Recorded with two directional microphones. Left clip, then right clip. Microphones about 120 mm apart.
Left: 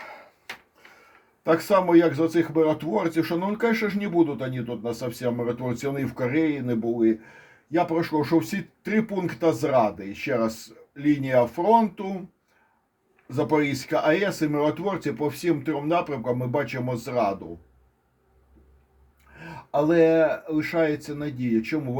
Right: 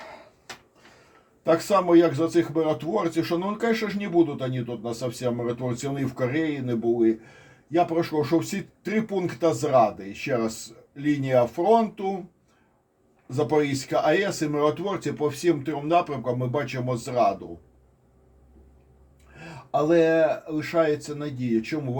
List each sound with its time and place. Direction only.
1.6 s speech: 50° left (ahead or behind)
13.2 s speech: 45° left (ahead or behind)
19.4 s a sound: 45° left (ahead or behind)
20.2 s speech: 45° left (ahead or behind)